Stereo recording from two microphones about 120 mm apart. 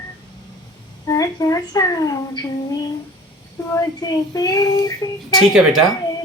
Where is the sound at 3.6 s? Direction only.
25° left (ahead or behind).